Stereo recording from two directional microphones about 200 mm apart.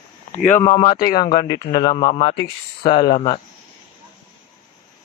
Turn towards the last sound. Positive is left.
turn(degrees=25)  # may be behind; listen again after turning